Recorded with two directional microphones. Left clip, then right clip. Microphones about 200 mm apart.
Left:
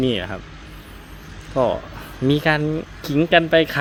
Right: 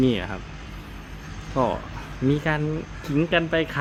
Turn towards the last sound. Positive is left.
turn(degrees=25)  # may be behind; listen again after turning